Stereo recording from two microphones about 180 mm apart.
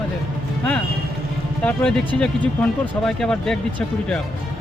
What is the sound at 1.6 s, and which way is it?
Speech, 5° left (ahead or behind).